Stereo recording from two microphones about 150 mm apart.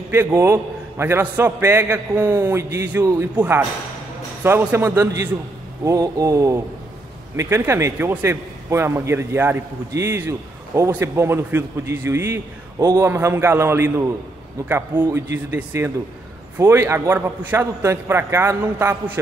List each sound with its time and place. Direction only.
0.1 s a man's voice: 15° right (ahead or behind)